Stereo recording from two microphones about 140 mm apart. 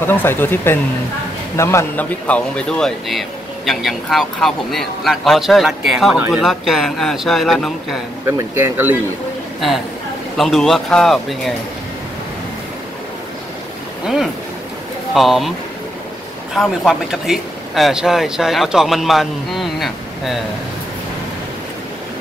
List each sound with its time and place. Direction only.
0.0 s speech: 15° left (ahead or behind)
8.3 s speech: 20° right (ahead or behind)
10.3 s speech: centre (ahead or behind)
14.0 s speech: 5° right (ahead or behind)
16.5 s speech: centre (ahead or behind)